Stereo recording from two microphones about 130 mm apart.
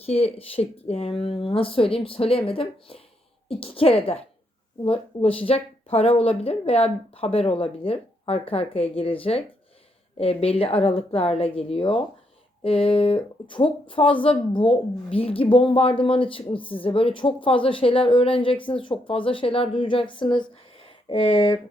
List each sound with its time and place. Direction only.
0.0 s speech: 50° left (ahead or behind)